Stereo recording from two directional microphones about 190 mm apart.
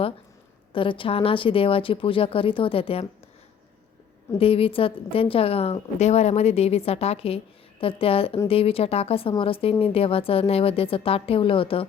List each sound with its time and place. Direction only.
0.7 s speech: 25° left (ahead or behind)
4.4 s a woman's voice: 30° left (ahead or behind)